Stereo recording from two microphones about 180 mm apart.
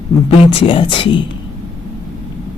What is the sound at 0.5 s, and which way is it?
Speech, 30° left (ahead or behind).